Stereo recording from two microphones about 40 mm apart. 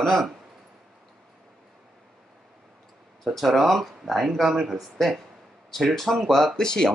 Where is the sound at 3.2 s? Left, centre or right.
Centre.